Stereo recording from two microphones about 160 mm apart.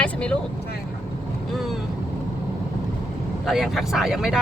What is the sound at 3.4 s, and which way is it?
Speech, centre (ahead or behind).